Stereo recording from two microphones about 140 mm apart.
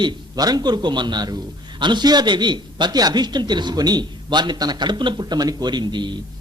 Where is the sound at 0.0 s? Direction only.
30° right (ahead or behind).